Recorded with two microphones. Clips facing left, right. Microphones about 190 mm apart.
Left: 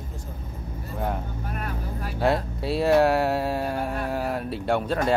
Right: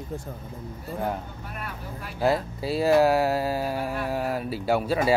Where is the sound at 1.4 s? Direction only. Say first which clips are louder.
Left 4 dB; 45° left (ahead or behind).